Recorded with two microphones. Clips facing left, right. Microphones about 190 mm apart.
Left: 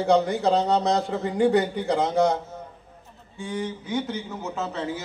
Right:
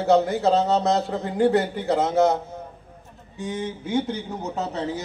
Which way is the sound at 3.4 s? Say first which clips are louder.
Right 1 dB; 25° right (ahead or behind).